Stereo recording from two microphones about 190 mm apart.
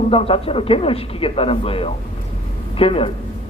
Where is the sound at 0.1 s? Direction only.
30° left (ahead or behind).